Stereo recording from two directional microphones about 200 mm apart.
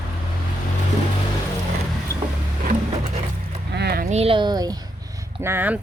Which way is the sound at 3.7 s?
55° right (ahead or behind).